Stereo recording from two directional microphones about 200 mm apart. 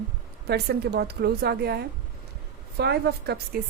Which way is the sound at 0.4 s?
55° right (ahead or behind).